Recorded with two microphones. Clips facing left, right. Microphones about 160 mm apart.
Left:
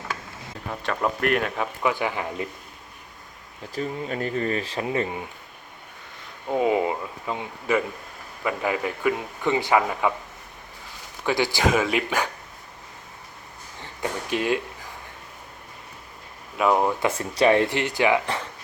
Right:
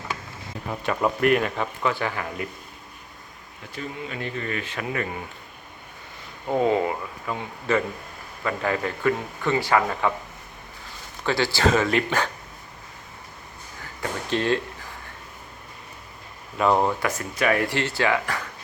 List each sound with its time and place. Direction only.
0.7 s speech: 5° right (ahead or behind)
1.9 s a man's voice: 15° left (ahead or behind)
3.8 s speech: 40° left (ahead or behind); by 5.2 s 25° left (ahead or behind)
6.6 s a man's voice: 15° left (ahead or behind)
11.3 s a man's voice: 15° left (ahead or behind)
14.3 s a man's voice: 10° left (ahead or behind)
16.6 s speech: 5° left (ahead or behind)
17.0 s speech: 30° left (ahead or behind)